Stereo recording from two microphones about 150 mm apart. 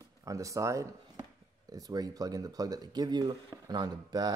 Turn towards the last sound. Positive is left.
turn(degrees=-25)  # may be behind; listen again after turning